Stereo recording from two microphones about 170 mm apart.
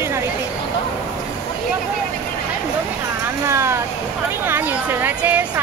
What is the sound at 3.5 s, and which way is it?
Speech, 15° right (ahead or behind).